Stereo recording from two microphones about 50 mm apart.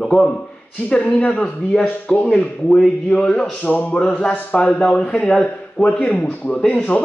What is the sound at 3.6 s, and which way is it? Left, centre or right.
Speech, left.